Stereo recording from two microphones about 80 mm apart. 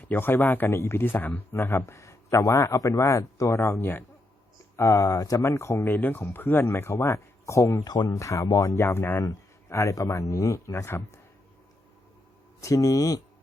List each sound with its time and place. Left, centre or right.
0.0 s a man's voice: left
4.8 s a man's voice: left
7.9 s speech: left
8.1 s a man's voice: left
12.6 s speech: left